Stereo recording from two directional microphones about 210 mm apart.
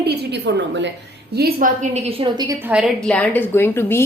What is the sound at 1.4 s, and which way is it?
A woman's voice, 45° right (ahead or behind).